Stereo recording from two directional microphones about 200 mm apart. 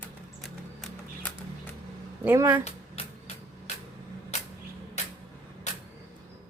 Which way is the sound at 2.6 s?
30° left (ahead or behind).